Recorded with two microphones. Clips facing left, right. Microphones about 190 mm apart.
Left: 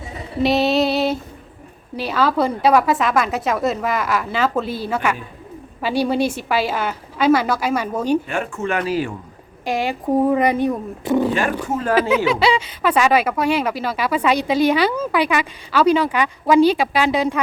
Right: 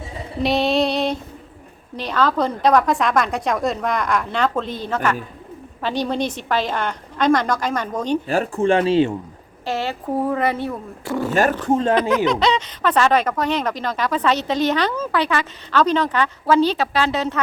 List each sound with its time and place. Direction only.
0.4 s female singing: centre (ahead or behind)
2.0 s a woman's voice: 10° left (ahead or behind)
8.3 s speech: 35° right (ahead or behind)
9.6 s speech: 15° left (ahead or behind)
11.7 s speech: 25° right (ahead or behind)
12.1 s speech: 10° left (ahead or behind)